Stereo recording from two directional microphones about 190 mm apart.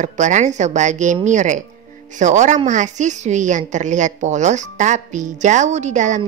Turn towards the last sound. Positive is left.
turn(degrees=-40)  # may be behind; listen again after turning